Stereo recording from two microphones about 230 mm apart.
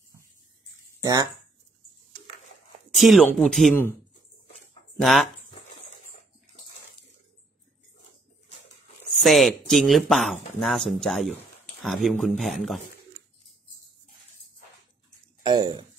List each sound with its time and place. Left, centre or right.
1.0 s speech: centre
2.9 s speech: centre
4.9 s speech: centre
9.1 s speech: centre
15.4 s a sound: centre